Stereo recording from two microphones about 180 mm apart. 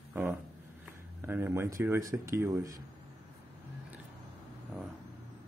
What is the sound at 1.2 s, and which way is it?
Speech, 10° right (ahead or behind).